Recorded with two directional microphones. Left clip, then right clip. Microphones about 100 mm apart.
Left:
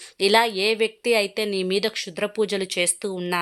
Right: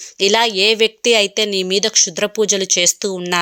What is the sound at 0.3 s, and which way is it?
Speech, 25° right (ahead or behind).